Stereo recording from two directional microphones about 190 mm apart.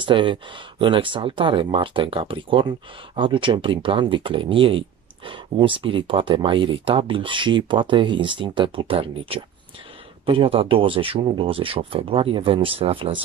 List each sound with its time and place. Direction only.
0.0 s speech: 25° right (ahead or behind)